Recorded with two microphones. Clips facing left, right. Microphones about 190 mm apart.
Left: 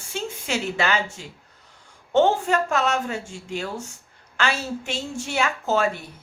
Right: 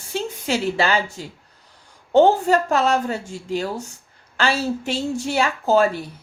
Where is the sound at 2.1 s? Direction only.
35° right (ahead or behind).